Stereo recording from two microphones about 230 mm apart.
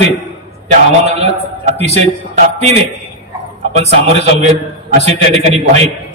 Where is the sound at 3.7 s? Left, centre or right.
Right.